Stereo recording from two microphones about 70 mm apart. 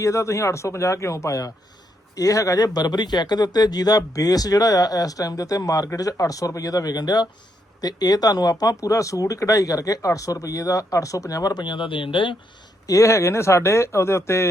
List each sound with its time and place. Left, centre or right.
0.0 s speech: left
2.7 s speech: left
12.9 s speech: left